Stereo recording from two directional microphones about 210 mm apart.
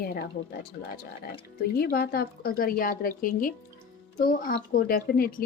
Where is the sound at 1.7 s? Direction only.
45° left (ahead or behind).